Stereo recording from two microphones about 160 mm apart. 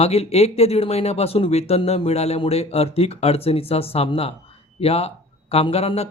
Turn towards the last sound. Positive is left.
turn(degrees=40)  # may be behind; listen again after turning